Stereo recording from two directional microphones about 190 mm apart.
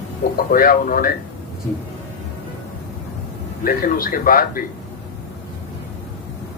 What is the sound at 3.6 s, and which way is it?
Speech, 50° left (ahead or behind).